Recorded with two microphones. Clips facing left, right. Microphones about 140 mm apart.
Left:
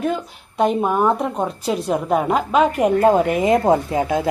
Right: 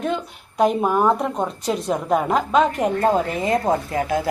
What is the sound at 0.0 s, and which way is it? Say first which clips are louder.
A woman's voice: left 2 dB; 5° left (ahead or behind).